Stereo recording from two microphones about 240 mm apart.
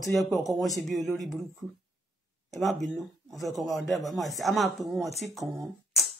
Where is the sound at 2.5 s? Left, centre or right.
Centre.